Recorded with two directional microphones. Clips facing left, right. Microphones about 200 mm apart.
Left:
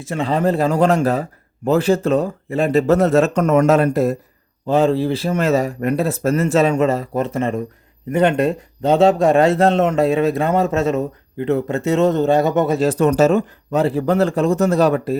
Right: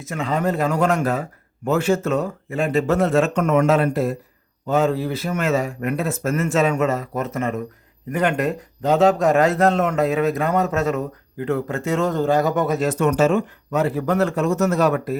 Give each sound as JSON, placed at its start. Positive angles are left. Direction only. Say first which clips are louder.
{"t": 0.0, "sound": "a man's voice", "louder": "left 4 dB", "side_deg": 30}
{"t": 4.6, "sound": "a man's voice", "louder": "left 4 dB", "side_deg": 30}